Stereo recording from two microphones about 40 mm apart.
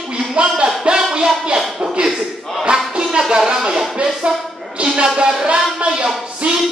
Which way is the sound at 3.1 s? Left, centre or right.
Centre.